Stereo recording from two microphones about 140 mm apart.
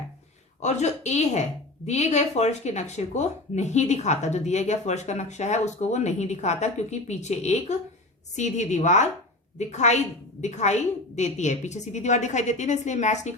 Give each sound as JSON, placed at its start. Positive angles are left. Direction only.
{"t": 0.6, "sound": "a woman's voice", "side_deg": 55}